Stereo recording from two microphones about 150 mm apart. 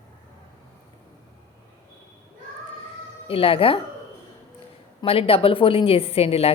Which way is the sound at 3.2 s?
40° left (ahead or behind).